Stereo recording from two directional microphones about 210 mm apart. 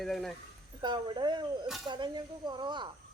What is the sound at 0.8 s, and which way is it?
Speech, 20° right (ahead or behind).